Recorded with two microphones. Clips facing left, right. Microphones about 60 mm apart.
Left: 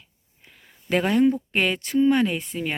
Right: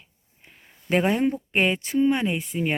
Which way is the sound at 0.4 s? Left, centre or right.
Right.